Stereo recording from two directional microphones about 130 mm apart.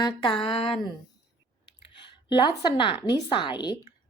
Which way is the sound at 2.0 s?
35° left (ahead or behind).